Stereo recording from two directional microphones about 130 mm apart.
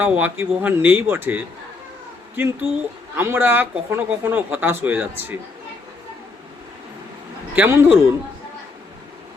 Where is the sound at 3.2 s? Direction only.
15° right (ahead or behind).